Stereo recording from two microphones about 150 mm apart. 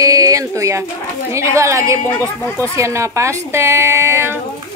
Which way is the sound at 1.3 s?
20° right (ahead or behind).